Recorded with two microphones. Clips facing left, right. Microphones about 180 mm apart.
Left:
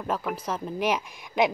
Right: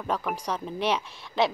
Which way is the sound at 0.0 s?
5° left (ahead or behind).